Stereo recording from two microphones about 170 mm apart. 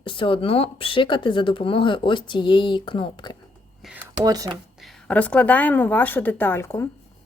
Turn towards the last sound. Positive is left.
turn(degrees=15)  # may be behind; listen again after turning